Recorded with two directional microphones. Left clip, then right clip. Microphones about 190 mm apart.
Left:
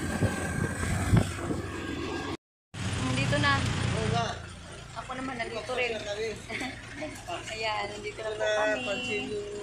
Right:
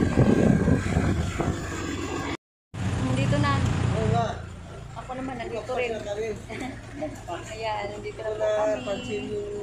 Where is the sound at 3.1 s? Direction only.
10° left (ahead or behind).